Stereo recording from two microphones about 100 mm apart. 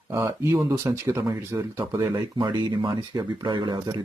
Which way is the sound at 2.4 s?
50° right (ahead or behind).